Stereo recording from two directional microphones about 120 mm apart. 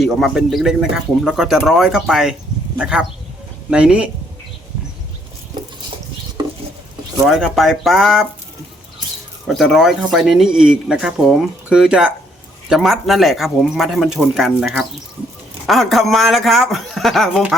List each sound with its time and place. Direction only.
0.0 s speech: centre (ahead or behind)
6.4 s patter: 35° right (ahead or behind)
7.3 s speech: centre (ahead or behind)
9.5 s speech: centre (ahead or behind)